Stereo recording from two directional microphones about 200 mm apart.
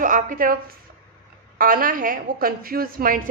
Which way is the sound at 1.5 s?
45° right (ahead or behind).